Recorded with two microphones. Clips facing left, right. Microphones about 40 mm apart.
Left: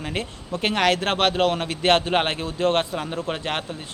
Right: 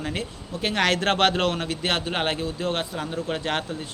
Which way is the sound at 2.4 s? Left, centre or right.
Left.